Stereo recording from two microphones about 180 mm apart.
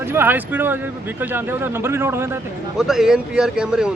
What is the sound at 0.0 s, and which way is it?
Speech, 15° right (ahead or behind).